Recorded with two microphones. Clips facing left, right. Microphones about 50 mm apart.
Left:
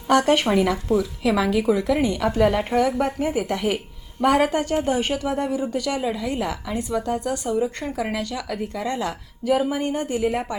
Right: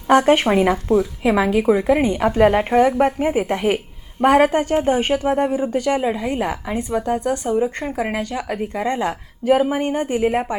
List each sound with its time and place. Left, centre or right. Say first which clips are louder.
0.1 s speech: right 4 dB; right